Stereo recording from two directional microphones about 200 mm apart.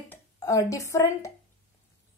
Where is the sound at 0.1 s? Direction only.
15° left (ahead or behind).